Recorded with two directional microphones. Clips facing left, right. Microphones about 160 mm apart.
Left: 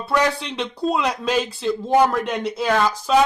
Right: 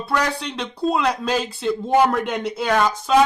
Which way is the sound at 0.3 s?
Centre (ahead or behind).